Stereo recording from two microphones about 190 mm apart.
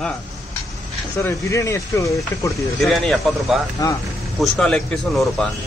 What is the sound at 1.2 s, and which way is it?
Speech, 15° left (ahead or behind).